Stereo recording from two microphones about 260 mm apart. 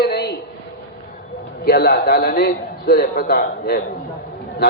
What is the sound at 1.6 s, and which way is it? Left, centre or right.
A man's voice, left.